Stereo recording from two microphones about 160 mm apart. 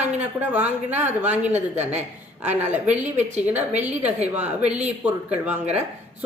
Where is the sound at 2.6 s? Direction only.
45° right (ahead or behind).